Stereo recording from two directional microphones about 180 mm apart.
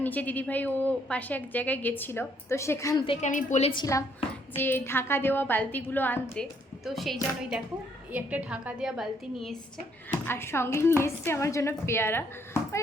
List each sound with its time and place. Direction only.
0.0 s a woman's voice: 10° left (ahead or behind)
3.0 s a woman's voice: 30° left (ahead or behind)
3.2 s a woman's voice: 40° left (ahead or behind)
3.7 s a woman's voice: 20° left (ahead or behind); by 9.6 s centre (ahead or behind)
10.1 s a woman's voice: 10° left (ahead or behind)